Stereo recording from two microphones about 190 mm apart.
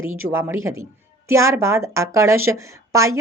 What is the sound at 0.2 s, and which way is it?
A woman's voice, 15° right (ahead or behind).